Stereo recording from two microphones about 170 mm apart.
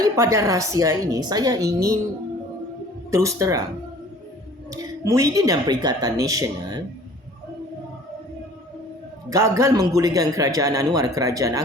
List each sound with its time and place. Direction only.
0.0 s a man's voice: 15° right (ahead or behind)
3.1 s speech: 15° right (ahead or behind)
4.7 s a man's voice: 20° right (ahead or behind)
9.3 s a man's voice: 15° right (ahead or behind)